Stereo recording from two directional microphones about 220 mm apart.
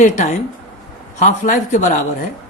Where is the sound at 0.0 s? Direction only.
35° left (ahead or behind).